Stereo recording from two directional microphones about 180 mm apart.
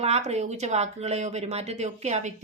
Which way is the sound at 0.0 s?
35° right (ahead or behind).